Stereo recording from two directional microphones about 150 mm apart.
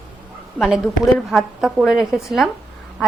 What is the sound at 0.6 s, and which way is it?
A woman's voice, centre (ahead or behind).